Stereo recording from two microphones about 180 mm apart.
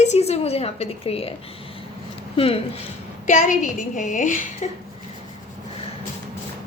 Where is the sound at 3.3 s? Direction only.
45° left (ahead or behind).